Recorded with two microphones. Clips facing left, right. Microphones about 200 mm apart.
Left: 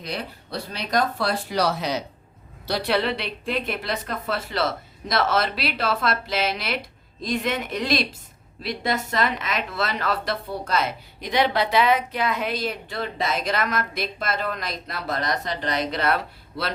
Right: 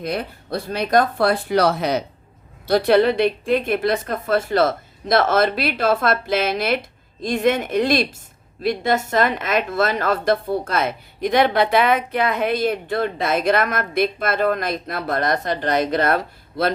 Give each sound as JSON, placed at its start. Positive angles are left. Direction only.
{"t": 0.0, "sound": "a woman's voice", "side_deg": -50}